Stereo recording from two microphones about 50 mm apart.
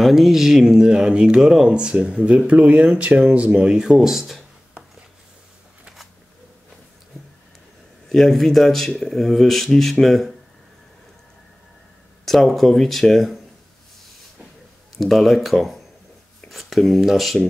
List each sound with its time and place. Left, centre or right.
0.0 s speech: centre
8.1 s speech: centre
12.3 s speech: centre
15.0 s speech: centre